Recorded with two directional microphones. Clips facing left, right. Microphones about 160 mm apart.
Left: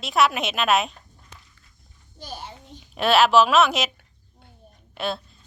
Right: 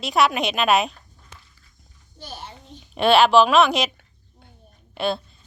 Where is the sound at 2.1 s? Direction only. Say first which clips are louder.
Left 1 dB; 10° left (ahead or behind).